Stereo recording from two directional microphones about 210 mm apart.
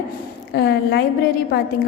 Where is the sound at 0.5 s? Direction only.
55° left (ahead or behind).